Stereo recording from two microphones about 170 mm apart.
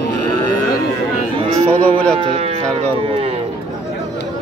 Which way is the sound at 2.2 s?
35° right (ahead or behind).